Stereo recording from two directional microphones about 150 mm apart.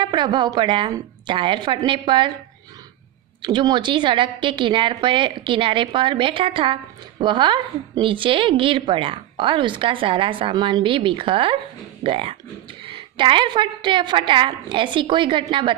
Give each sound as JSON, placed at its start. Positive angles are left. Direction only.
{"t": 0.0, "sound": "a woman's voice", "side_deg": -30}
{"t": 3.4, "sound": "a woman's voice", "side_deg": -30}